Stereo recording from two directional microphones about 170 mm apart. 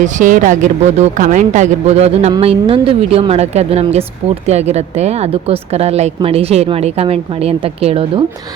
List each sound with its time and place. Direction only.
0.0 s a woman's voice: 45° right (ahead or behind)